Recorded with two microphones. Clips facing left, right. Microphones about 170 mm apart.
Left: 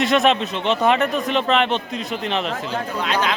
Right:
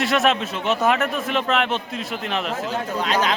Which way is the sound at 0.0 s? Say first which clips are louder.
Left 3 dB; centre (ahead or behind).